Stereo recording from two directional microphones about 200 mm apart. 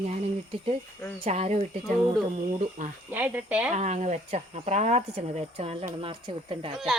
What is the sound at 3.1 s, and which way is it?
Speech, 10° right (ahead or behind).